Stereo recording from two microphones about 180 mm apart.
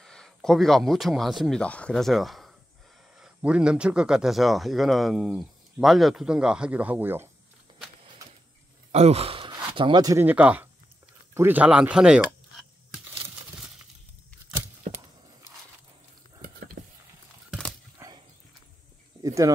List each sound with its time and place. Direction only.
0.0 s speech: 5° left (ahead or behind)
8.9 s gasp: 35° right (ahead or behind)
9.8 s speech: 25° right (ahead or behind); by 12.6 s centre (ahead or behind)
16.3 s a sound: 60° right (ahead or behind)
17.5 s dog: 5° left (ahead or behind)
18.0 s dog: 15° right (ahead or behind)
19.2 s a sound: 20° right (ahead or behind)